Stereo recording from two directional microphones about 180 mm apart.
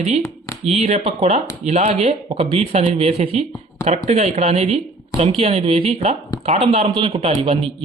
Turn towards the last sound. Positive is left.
turn(degrees=-35)  # may be behind; listen again after turning